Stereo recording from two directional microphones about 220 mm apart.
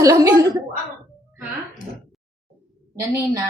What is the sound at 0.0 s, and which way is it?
Speech, 15° right (ahead or behind).